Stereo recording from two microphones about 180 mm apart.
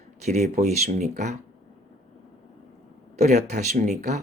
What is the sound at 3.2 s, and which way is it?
Speech, 40° right (ahead or behind).